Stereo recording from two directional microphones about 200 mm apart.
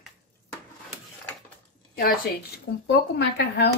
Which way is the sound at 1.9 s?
50° left (ahead or behind).